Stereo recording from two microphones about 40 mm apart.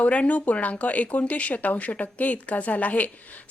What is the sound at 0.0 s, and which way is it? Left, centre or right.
A woman's voice, left.